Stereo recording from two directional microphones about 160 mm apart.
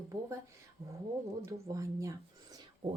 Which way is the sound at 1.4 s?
20° right (ahead or behind).